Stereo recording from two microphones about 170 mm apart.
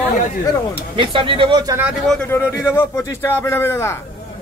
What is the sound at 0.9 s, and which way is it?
Speech, 30° right (ahead or behind).